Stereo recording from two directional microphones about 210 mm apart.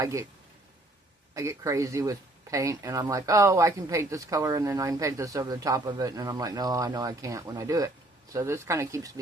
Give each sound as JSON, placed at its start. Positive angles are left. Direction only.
{"t": 0.0, "sound": "speech", "side_deg": -15}
{"t": 1.3, "sound": "speech", "side_deg": -15}